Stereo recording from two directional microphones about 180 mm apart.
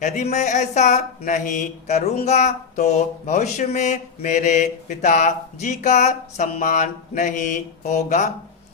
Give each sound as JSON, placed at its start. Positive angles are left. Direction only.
{"t": 0.0, "sound": "speech", "side_deg": 45}